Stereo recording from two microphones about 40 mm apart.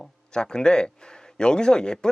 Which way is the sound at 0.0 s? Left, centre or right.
Centre.